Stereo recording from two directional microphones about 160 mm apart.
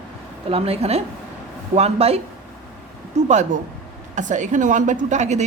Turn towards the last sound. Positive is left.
turn(degrees=-45)  # may be behind; listen again after turning